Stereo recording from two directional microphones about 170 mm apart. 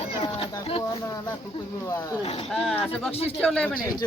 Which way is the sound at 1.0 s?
20° left (ahead or behind).